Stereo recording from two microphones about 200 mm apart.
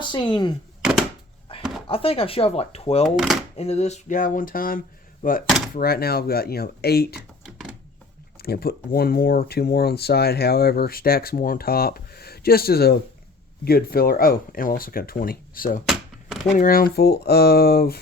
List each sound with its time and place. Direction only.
0.0 s speech: 25° left (ahead or behind)
1.9 s speech: 30° left (ahead or behind); by 7.2 s 50° left (ahead or behind)
8.4 s speech: 50° left (ahead or behind)
15.9 s a sound: centre (ahead or behind)
16.6 s speech: 45° left (ahead or behind)